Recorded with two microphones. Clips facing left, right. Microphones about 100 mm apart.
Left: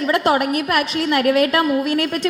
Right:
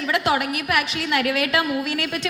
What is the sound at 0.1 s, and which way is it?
A woman's voice, 45° left (ahead or behind).